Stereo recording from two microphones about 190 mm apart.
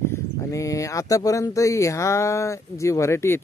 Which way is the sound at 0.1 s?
15° left (ahead or behind).